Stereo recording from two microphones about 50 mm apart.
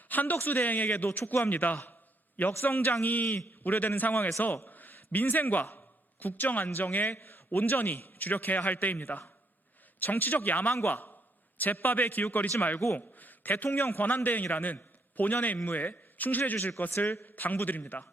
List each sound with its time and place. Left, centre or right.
0.1 s a man's voice: left
1.5 s a man's voice: left
1.9 s a sound: left
2.5 s a man's voice: left
13.0 s a sound: left
13.7 s a man's voice: left